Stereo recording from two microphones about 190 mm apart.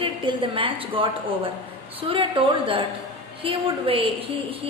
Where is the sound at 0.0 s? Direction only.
25° right (ahead or behind).